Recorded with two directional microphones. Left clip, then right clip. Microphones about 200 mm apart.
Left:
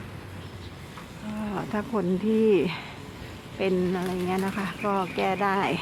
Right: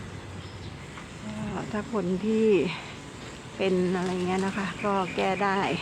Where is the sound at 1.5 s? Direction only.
15° left (ahead or behind).